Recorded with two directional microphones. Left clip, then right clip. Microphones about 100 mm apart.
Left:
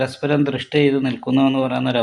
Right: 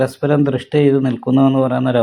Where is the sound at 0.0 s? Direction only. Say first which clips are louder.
Right 4 dB; 40° right (ahead or behind).